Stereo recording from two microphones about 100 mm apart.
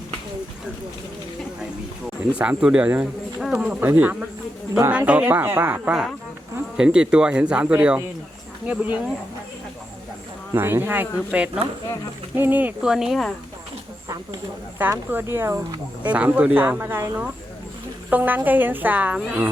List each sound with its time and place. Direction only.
2.4 s a woman's voice: 10° right (ahead or behind)
3.8 s a woman's voice: 20° right (ahead or behind)
6.7 s a woman's voice: 10° right (ahead or behind)
10.5 s a woman's voice: 20° right (ahead or behind)
12.8 s speech: 5° right (ahead or behind)
14.8 s speech: 20° right (ahead or behind)
16.0 s a woman's voice: 15° right (ahead or behind)